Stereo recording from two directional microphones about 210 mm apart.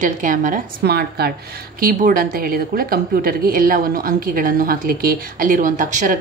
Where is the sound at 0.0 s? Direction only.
40° right (ahead or behind).